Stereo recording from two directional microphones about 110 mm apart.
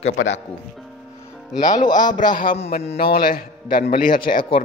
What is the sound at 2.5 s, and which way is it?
Speech, 70° left (ahead or behind).